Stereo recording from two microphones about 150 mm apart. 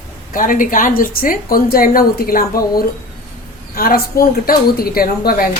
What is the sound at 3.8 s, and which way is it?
A woman's voice, 85° left.